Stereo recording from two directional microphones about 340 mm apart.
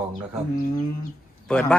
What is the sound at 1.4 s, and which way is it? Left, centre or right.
Speech, centre.